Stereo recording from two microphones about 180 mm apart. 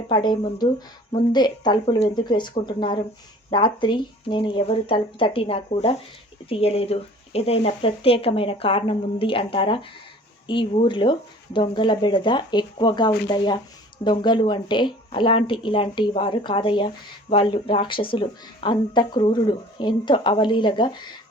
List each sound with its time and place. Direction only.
0.1 s a woman's voice: 25° left (ahead or behind)